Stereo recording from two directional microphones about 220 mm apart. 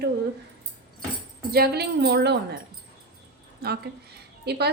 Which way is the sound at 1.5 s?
45° right (ahead or behind).